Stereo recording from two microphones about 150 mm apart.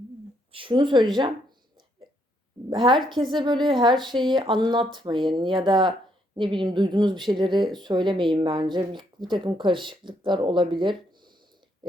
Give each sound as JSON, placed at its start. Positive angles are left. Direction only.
{"t": 0.5, "sound": "speech", "side_deg": -35}
{"t": 2.6, "sound": "speech", "side_deg": -30}